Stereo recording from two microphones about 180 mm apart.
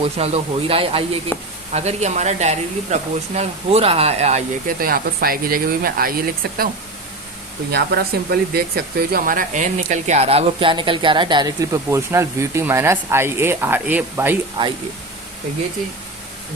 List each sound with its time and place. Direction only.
0.0 s speech: 35° right (ahead or behind)
1.3 s a woman's voice: 10° left (ahead or behind)
1.7 s speech: 40° right (ahead or behind)
4.8 s speech: 55° right (ahead or behind)
7.7 s speech: 65° right (ahead or behind); by 14.3 s 10° right (ahead or behind)